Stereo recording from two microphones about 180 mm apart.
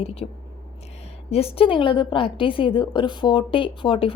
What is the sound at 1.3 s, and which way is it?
A woman's voice, 35° left (ahead or behind).